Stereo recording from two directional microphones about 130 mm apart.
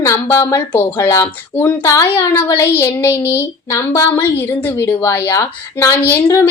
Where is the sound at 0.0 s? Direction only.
20° left (ahead or behind).